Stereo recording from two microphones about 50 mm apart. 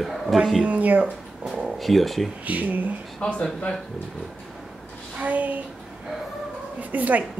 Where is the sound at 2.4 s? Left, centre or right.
Right.